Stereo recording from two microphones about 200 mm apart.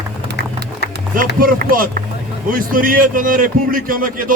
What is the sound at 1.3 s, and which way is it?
A man's voice, 45° right (ahead or behind).